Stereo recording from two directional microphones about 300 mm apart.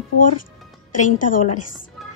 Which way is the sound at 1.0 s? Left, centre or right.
Left.